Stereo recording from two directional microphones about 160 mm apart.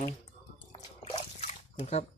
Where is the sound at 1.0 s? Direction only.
45° left (ahead or behind).